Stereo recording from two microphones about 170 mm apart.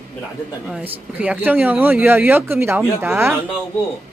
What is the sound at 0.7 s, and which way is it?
Speech, 5° right (ahead or behind).